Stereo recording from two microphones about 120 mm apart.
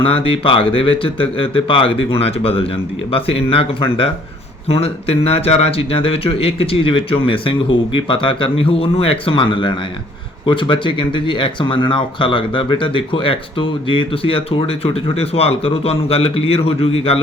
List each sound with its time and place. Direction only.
0.0 s speech: 50° left (ahead or behind)